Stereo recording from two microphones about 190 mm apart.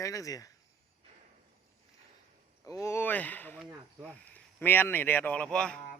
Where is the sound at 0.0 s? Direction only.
15° left (ahead or behind).